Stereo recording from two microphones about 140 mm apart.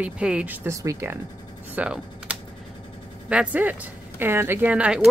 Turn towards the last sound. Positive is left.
turn(degrees=-10)  # may be behind; listen again after turning